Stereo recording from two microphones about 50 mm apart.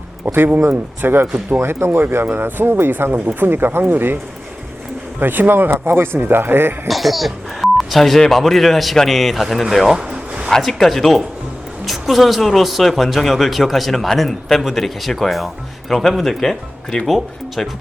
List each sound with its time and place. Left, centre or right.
0.3 s speech: right
1.6 s speech: right
2.0 s speech: right
3.1 s speech: right
5.2 s speech: right
6.8 s speech: centre
10.0 s a sound: right
10.6 s speech: centre